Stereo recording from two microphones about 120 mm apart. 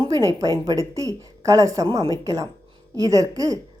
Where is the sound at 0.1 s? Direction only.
30° right (ahead or behind).